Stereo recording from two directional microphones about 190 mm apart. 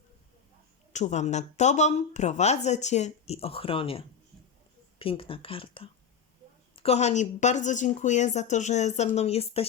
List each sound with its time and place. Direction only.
0.9 s speech: 40° left (ahead or behind)